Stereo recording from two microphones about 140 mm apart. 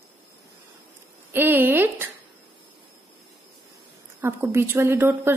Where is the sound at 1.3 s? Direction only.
15° right (ahead or behind).